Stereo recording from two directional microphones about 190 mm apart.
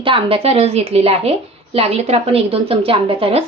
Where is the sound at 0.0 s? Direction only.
30° right (ahead or behind).